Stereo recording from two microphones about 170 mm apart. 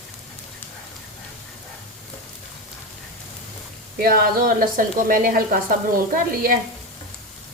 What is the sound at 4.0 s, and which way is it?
A woman's voice, 55° right (ahead or behind).